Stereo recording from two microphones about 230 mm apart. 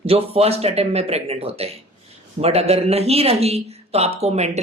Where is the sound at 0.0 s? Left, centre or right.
Right.